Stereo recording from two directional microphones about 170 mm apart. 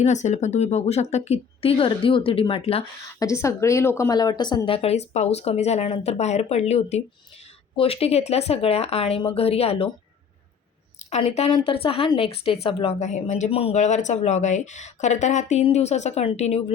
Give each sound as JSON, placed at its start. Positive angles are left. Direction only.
{"t": 0.0, "sound": "speech", "side_deg": 45}
{"t": 3.1, "sound": "speech", "side_deg": 15}
{"t": 11.1, "sound": "speech", "side_deg": 40}